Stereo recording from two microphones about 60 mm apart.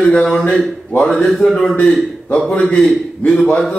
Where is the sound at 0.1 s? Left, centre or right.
Centre.